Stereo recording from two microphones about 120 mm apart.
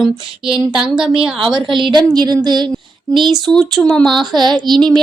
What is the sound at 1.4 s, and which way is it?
Speech, 40° right (ahead or behind).